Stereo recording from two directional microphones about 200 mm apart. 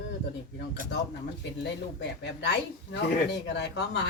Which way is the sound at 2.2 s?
60° left (ahead or behind).